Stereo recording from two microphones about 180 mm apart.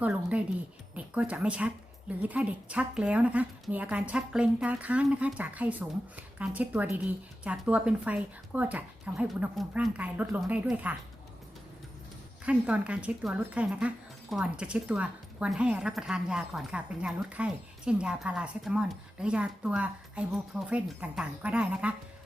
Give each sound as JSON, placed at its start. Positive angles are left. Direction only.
{"t": 0.0, "sound": "speech", "side_deg": -10}
{"t": 12.5, "sound": "speech", "side_deg": -5}